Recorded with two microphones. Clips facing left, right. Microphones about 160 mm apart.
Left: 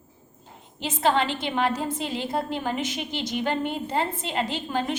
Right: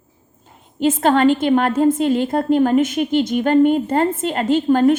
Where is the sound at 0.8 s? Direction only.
50° right (ahead or behind).